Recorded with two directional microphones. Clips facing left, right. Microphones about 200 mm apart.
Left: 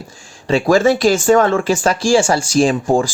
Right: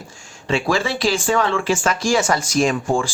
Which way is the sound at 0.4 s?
40° left (ahead or behind).